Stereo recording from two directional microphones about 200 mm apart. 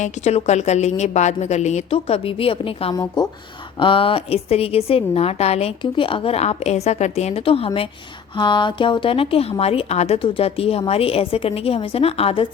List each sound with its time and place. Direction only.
0.0 s a woman's voice: 35° left (ahead or behind)